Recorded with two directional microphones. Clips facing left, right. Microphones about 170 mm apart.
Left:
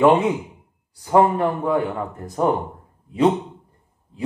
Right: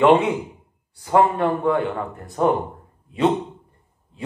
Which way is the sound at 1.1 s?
20° left (ahead or behind).